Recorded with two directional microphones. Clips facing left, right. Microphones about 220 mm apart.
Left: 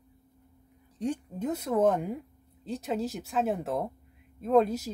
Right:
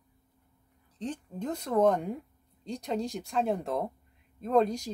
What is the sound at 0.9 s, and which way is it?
A woman's voice, 10° left (ahead or behind).